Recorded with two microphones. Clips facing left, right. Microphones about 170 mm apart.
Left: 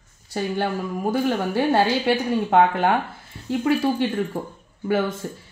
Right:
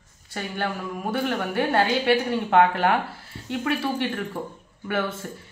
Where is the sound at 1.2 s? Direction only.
25° left (ahead or behind).